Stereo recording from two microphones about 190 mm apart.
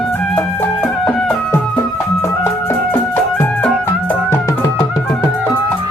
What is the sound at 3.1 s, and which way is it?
Music, 10° left (ahead or behind).